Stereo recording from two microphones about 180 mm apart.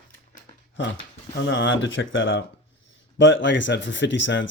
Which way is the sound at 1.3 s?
90° left.